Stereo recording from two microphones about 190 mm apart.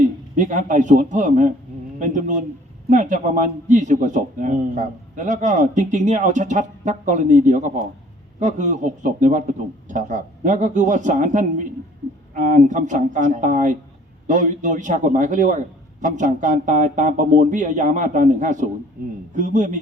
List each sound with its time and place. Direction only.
0.3 s a man's voice: 40° right (ahead or behind)